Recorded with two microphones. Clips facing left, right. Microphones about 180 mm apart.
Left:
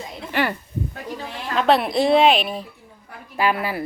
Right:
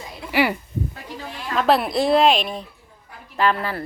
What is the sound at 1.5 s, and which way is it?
A woman's voice, centre (ahead or behind).